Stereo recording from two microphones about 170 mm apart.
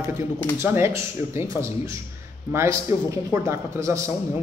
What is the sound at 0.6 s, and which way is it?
Speech, 15° right (ahead or behind).